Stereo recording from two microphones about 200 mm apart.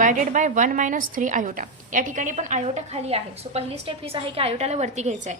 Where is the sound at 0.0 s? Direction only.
40° right (ahead or behind).